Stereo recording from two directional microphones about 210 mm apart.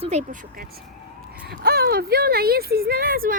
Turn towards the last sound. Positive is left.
turn(degrees=-45)  # may be behind; listen again after turning